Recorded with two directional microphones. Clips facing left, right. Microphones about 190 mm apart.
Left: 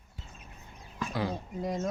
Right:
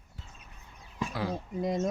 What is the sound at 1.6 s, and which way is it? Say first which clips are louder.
Speech: right 3 dB; 20° right (ahead or behind).